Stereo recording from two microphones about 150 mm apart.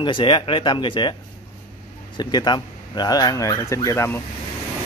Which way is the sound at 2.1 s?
30° left (ahead or behind).